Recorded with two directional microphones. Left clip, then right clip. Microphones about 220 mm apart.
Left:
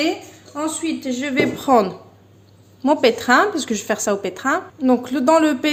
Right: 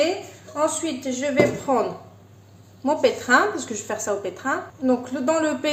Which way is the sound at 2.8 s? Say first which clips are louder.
Left 4 dB; 40° left (ahead or behind).